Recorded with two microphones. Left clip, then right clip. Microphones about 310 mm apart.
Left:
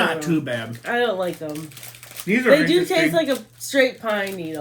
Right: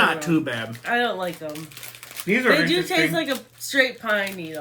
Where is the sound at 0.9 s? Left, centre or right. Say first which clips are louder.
Left 2 dB; centre.